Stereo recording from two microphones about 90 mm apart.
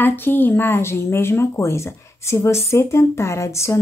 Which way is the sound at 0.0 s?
25° left (ahead or behind).